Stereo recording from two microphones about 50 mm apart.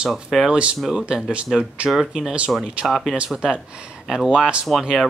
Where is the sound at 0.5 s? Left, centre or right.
Centre.